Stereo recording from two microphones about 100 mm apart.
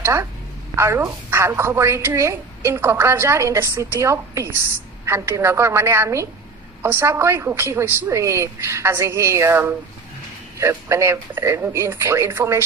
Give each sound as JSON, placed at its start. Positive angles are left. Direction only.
{"t": 0.0, "sound": "a woman's voice", "side_deg": -25}